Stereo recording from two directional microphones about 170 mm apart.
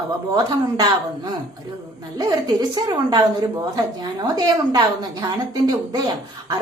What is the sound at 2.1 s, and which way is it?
A woman's voice, 20° right (ahead or behind).